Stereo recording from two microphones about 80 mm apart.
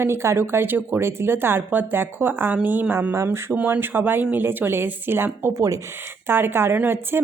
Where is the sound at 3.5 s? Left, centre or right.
Right.